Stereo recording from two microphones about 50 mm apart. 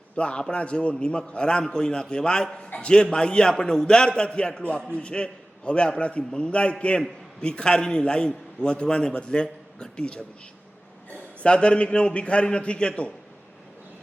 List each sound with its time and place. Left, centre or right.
0.2 s a man's voice: left
11.4 s a man's voice: centre